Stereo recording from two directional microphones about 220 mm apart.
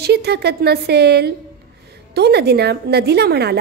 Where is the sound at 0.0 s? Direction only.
45° right (ahead or behind).